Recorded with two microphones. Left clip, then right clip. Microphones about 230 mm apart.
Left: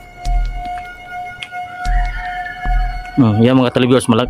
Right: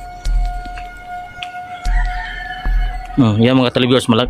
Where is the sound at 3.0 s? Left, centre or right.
Centre.